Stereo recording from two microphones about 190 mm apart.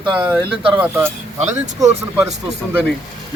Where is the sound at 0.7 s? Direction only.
10° right (ahead or behind).